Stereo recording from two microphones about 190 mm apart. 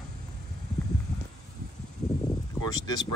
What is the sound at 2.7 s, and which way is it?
Speech, 20° left (ahead or behind).